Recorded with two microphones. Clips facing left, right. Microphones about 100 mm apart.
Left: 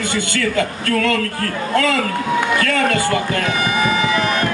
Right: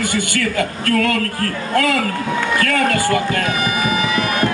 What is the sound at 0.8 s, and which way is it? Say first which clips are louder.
Speech: right 5 dB; 45° right (ahead or behind).